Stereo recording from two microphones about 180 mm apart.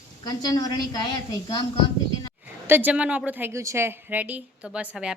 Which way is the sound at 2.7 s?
10° right (ahead or behind).